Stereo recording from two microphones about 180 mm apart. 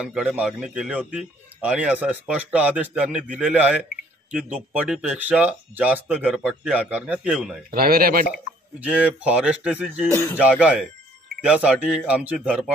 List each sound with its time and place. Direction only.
0.0 s speech: 5° right (ahead or behind)
7.7 s speech: 55° right (ahead or behind)
8.3 s speech: 5° right (ahead or behind)